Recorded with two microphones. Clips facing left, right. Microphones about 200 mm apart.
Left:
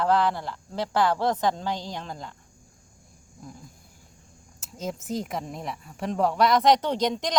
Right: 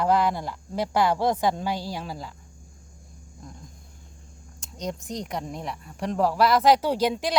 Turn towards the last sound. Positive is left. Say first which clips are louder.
# right 2 dB
turn(degrees=-10)  # may be behind; listen again after turning